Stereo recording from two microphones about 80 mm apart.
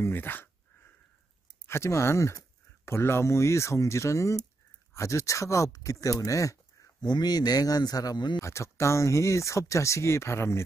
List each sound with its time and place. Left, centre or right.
0.0 s speech: left
1.7 s speech: left
7.0 s a man's voice: left
8.4 s speech: left